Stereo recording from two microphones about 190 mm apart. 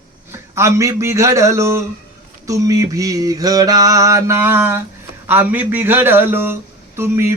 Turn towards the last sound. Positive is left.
turn(degrees=-15)  # may be behind; listen again after turning